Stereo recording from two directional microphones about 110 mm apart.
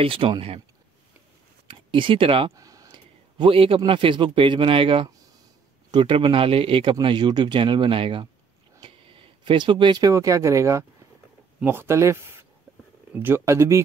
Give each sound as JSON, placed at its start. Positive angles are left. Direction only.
{"t": 0.0, "sound": "speech", "side_deg": -55}
{"t": 1.7, "sound": "speech", "side_deg": -50}
{"t": 2.5, "sound": "a sound", "side_deg": -30}
{"t": 2.9, "sound": "a man's voice", "side_deg": -50}